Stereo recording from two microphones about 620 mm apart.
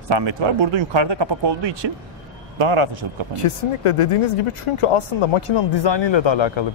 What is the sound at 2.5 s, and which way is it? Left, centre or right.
Speech, right.